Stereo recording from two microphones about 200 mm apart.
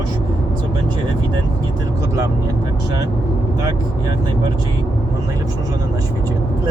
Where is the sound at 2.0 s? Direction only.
15° right (ahead or behind).